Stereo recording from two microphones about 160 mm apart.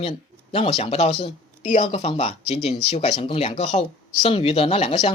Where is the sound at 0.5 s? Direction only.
35° left (ahead or behind).